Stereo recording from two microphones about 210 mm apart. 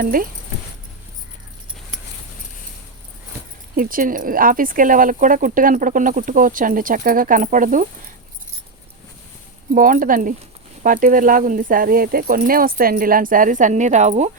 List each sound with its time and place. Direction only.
0.0 s speech: 40° right (ahead or behind)
3.8 s speech: 40° right (ahead or behind)
9.7 s speech: 40° right (ahead or behind)